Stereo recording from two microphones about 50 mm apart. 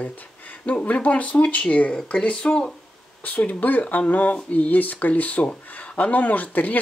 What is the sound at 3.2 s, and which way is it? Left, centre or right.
Speech, left.